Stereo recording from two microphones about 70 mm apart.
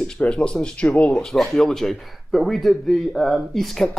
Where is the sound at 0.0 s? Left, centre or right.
Centre.